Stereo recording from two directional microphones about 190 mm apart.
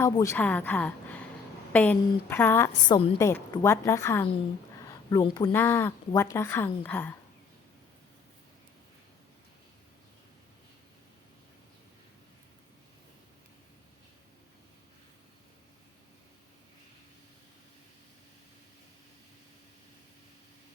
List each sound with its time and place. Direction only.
0.0 s a woman's voice: 15° left (ahead or behind)